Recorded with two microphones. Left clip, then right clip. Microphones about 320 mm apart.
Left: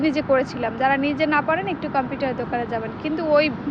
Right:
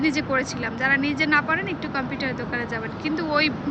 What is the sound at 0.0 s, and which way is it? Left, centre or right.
Speech, centre.